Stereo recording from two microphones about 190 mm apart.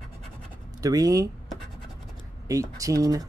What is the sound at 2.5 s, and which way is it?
Speech, 15° right (ahead or behind).